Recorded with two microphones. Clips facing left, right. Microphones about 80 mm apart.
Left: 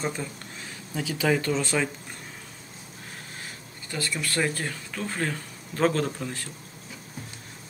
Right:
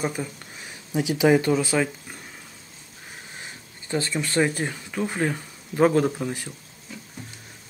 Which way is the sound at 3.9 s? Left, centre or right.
Right.